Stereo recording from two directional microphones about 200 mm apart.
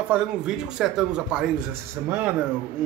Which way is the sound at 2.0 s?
15° right (ahead or behind).